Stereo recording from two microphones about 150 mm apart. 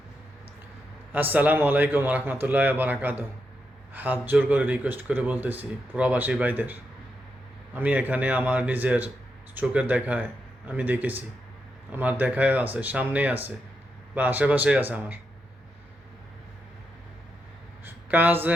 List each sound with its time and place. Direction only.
1.1 s speech: 10° right (ahead or behind)
17.8 s speech: 10° right (ahead or behind)